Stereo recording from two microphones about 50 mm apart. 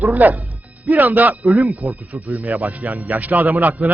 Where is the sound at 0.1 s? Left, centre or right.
Right.